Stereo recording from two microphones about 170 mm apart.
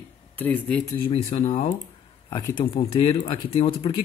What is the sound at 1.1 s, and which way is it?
Speech, 40° left (ahead or behind).